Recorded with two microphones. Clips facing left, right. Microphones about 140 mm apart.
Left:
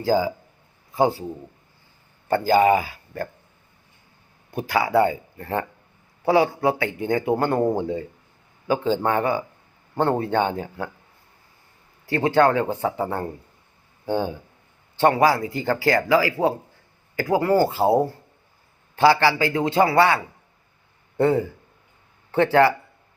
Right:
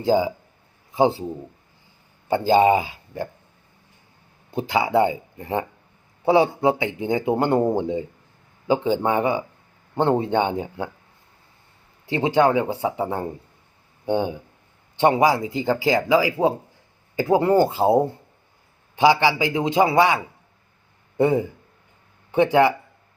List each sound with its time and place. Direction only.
0.0 s a man's voice: 20° right (ahead or behind)
2.4 s a man's voice: 25° right (ahead or behind)
4.5 s a man's voice: 20° right (ahead or behind)
12.0 s a man's voice: 20° right (ahead or behind)